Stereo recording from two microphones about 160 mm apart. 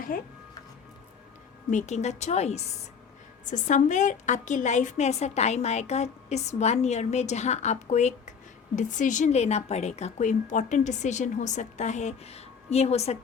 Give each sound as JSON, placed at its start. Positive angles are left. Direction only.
{"t": 0.1, "sound": "speech", "side_deg": 60}
{"t": 1.7, "sound": "a woman's voice", "side_deg": 45}
{"t": 3.4, "sound": "a woman's voice", "side_deg": 55}